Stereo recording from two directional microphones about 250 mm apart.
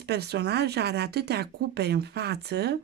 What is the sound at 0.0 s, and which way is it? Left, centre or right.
Speech, right.